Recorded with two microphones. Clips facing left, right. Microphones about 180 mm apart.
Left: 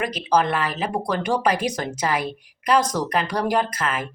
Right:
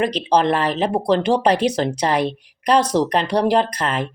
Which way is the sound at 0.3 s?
30° right (ahead or behind).